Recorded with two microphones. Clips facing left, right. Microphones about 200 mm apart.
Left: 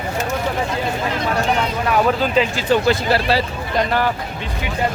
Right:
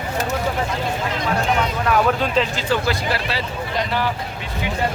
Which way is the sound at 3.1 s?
35° left (ahead or behind).